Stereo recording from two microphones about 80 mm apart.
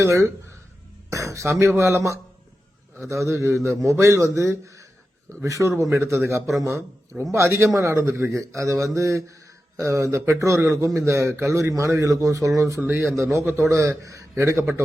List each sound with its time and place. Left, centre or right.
0.0 s a man's voice: right
14.3 s a man's voice: right